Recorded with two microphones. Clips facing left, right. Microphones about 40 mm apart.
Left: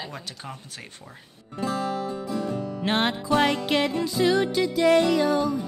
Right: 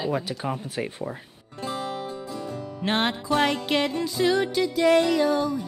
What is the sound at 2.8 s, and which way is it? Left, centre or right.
Music, centre.